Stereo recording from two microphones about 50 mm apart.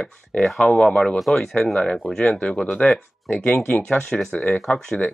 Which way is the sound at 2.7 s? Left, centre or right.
Left.